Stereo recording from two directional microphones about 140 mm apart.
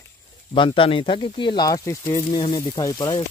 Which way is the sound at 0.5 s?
40° left (ahead or behind).